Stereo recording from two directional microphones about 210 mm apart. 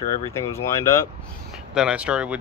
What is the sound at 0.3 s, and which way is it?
Speech, 15° left (ahead or behind).